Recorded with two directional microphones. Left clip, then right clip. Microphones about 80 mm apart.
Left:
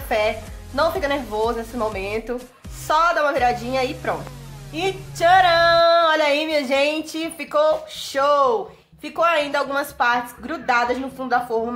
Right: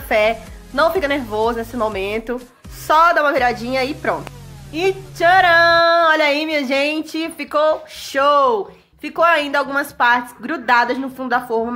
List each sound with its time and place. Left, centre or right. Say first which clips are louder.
0.1 s speech: right 5 dB; right
4.7 s female singing: right 5 dB; right